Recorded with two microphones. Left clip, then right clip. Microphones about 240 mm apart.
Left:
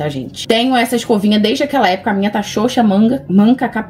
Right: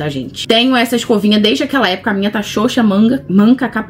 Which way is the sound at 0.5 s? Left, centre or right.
Centre.